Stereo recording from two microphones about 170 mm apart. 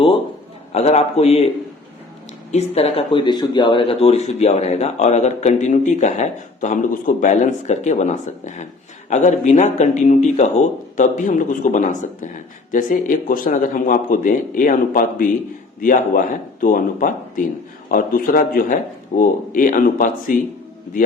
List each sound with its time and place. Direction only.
0.7 s speech: 40° left (ahead or behind)
2.5 s speech: 40° left (ahead or behind)